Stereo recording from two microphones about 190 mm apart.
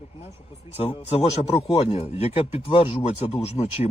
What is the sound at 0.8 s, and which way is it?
Speech, 35° left (ahead or behind).